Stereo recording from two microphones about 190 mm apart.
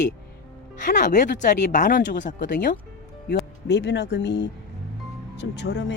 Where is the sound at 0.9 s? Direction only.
45° left (ahead or behind).